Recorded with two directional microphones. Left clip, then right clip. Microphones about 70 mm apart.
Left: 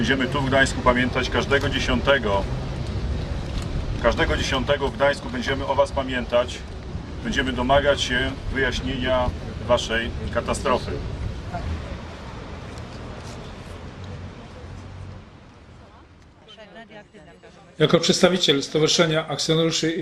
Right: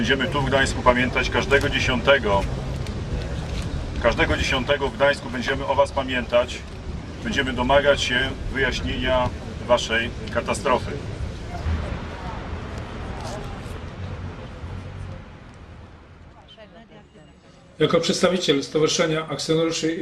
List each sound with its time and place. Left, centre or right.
0.0 s speech: centre
4.0 s speech: centre
17.7 s speech: left